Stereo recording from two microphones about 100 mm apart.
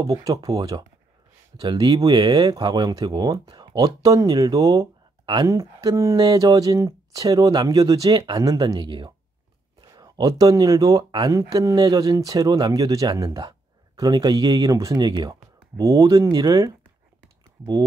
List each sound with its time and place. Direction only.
0.0 s speech: 35° right (ahead or behind)
5.5 s speech: 35° right (ahead or behind)